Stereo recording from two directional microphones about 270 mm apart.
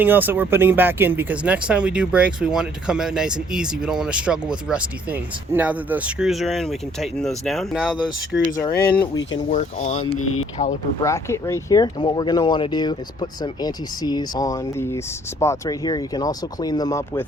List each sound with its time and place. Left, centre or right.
0.0 s speech: centre
8.5 s speech: centre
9.5 s speech: left
10.2 s speech: left
11.0 s speech: centre